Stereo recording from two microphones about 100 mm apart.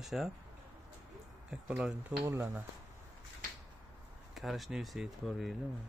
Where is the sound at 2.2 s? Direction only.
30° right (ahead or behind).